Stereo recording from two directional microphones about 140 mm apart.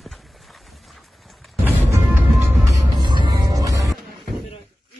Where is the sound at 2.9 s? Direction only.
35° right (ahead or behind).